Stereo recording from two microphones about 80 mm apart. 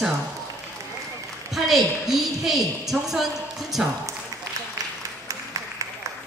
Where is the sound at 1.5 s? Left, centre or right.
Centre.